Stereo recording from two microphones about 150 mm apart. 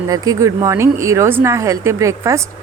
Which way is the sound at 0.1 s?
20° right (ahead or behind).